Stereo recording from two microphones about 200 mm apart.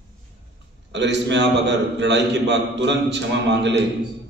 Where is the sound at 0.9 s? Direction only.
60° right (ahead or behind).